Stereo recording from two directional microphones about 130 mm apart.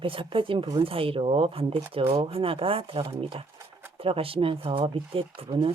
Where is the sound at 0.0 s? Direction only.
40° right (ahead or behind).